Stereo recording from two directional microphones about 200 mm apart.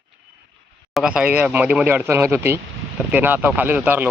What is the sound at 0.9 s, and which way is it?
Speech, centre (ahead or behind).